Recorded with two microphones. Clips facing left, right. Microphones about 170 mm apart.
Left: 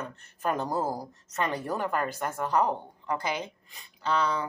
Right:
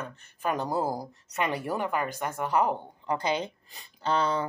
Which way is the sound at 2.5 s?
15° right (ahead or behind).